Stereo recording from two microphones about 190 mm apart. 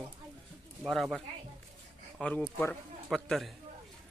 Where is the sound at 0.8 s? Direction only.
Centre (ahead or behind).